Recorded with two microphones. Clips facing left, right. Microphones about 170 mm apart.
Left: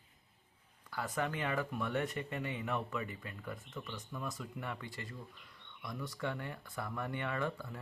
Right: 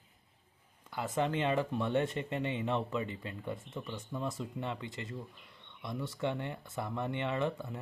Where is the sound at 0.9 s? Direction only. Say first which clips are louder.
Right 5 dB; 25° right (ahead or behind).